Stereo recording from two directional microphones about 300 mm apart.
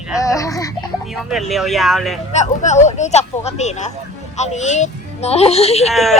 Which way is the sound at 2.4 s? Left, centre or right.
Left.